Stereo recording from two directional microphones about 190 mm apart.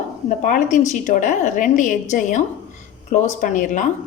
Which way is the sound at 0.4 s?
45° left (ahead or behind).